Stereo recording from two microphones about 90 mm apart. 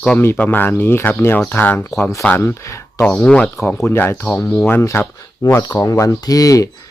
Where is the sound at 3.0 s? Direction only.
15° left (ahead or behind).